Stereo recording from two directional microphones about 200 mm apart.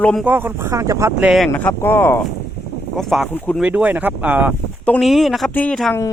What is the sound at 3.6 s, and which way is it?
Speech, 5° right (ahead or behind).